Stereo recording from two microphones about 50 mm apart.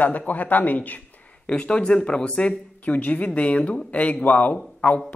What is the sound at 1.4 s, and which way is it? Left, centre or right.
A man's voice, left.